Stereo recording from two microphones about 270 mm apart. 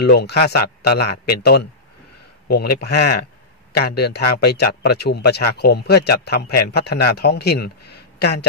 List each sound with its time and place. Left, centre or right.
0.0 s speech: left